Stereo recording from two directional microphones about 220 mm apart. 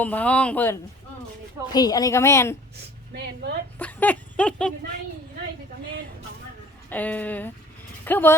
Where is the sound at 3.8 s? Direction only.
5° left (ahead or behind).